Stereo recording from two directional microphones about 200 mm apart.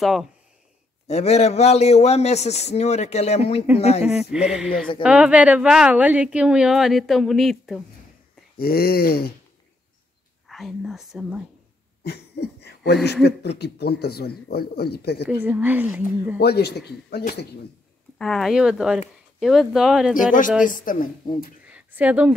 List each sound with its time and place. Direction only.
0.0 s a woman's voice: centre (ahead or behind)
1.0 s a man's voice: 30° left (ahead or behind)
4.0 s a woman's voice: 5° right (ahead or behind)
8.5 s a man's voice: 50° left (ahead or behind)
10.5 s speech: centre (ahead or behind)
12.0 s speech: 55° left (ahead or behind)
15.2 s speech: 5° right (ahead or behind)
16.3 s a man's voice: 55° left (ahead or behind)
18.1 s a woman's voice: 5° left (ahead or behind)
20.2 s a man's voice: 40° left (ahead or behind)
21.6 s a sound: 5° right (ahead or behind)